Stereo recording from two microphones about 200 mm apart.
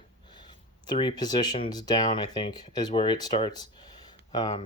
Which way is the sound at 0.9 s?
20° left (ahead or behind).